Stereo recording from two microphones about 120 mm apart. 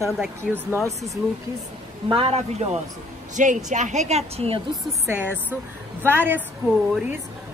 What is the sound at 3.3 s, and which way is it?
A woman's voice, 90° right.